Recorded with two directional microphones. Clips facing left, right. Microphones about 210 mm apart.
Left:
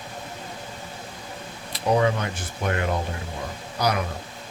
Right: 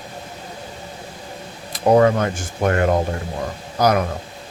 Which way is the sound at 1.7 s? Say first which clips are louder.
Right 7 dB; 50° right (ahead or behind).